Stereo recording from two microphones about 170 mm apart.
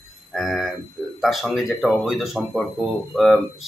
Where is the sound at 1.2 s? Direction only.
Centre (ahead or behind).